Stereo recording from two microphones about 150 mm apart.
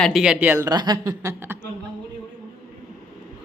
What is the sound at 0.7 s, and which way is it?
Speech, 25° right (ahead or behind).